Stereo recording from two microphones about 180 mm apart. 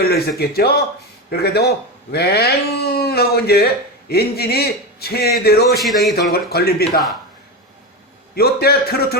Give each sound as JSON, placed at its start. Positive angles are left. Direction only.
{"t": 0.0, "sound": "speech", "side_deg": 60}
{"t": 5.7, "sound": "speech", "side_deg": 0}
{"t": 6.3, "sound": "speech", "side_deg": 60}
{"t": 8.4, "sound": "speech", "side_deg": 60}